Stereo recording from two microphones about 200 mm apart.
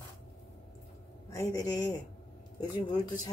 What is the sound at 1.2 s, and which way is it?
A woman's voice, 15° left (ahead or behind).